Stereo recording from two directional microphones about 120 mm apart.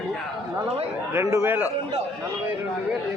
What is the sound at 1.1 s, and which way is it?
Speech, 25° right (ahead or behind).